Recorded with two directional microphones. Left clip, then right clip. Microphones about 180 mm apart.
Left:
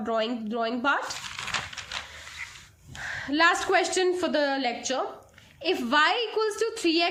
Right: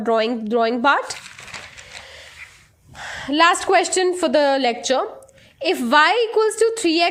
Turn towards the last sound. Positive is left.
turn(degrees=-40)  # may be behind; listen again after turning